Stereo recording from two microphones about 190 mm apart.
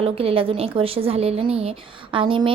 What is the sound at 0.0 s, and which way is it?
A woman's voice, 30° right (ahead or behind).